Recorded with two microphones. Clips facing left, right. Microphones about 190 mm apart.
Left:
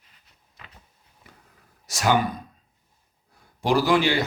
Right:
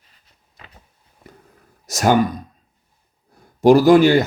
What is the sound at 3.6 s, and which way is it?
Speech, 45° right (ahead or behind).